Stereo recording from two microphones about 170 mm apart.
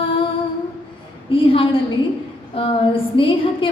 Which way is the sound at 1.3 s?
30° left (ahead or behind).